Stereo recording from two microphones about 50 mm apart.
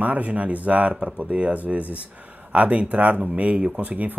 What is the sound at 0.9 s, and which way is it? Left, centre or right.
Speech, right.